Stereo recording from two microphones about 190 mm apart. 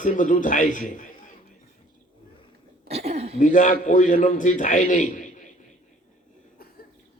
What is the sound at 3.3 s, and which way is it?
A man's voice, 40° left (ahead or behind).